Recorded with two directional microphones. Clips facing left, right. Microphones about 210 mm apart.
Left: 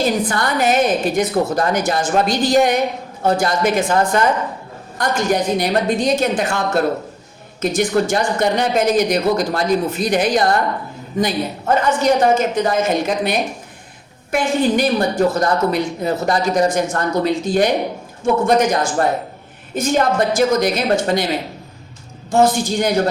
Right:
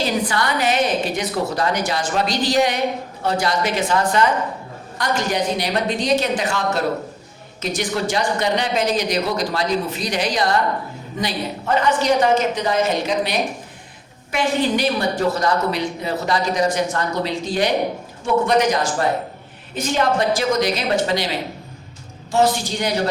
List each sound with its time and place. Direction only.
0.0 s speech: 50° left (ahead or behind)
22.3 s speech: 50° left (ahead or behind)